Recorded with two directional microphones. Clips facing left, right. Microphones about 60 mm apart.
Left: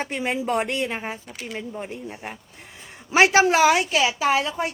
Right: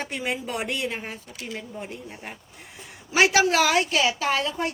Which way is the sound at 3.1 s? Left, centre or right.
Left.